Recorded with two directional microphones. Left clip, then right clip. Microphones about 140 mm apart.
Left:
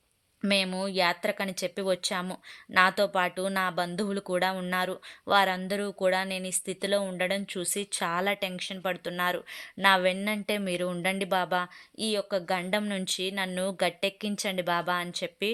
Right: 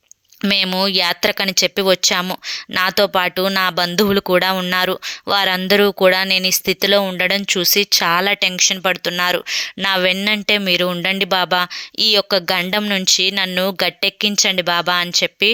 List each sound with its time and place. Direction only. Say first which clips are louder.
0.4 s speech: right 11 dB; 30° right (ahead or behind)
1.5 s speech: right 14 dB; 25° right (ahead or behind)
3.9 s speech: right 15 dB; 40° right (ahead or behind)
5.5 s speech: right 16 dB; 40° right (ahead or behind); by 12.1 s 25° right (ahead or behind)
12.1 s speech: right 10 dB; 45° right (ahead or behind)
12.8 s speech: right 16 dB; 25° right (ahead or behind)